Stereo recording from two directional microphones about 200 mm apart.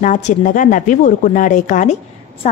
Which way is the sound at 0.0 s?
40° left (ahead or behind).